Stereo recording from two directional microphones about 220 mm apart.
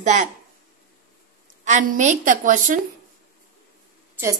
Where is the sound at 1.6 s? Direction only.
35° right (ahead or behind).